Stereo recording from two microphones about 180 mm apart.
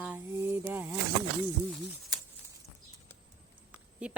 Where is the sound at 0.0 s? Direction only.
10° right (ahead or behind).